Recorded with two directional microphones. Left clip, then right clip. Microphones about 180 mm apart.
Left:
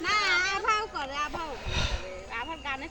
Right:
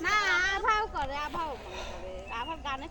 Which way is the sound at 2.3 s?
45° left (ahead or behind).